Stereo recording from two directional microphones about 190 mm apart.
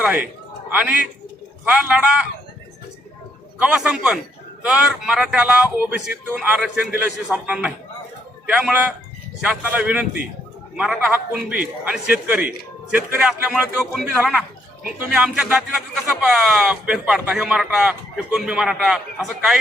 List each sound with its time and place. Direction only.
0.0 s speech: 5° right (ahead or behind)
3.6 s speech: 5° right (ahead or behind)